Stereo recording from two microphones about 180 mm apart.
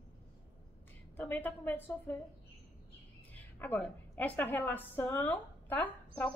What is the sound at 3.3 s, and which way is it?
A woman's voice, 10° left (ahead or behind).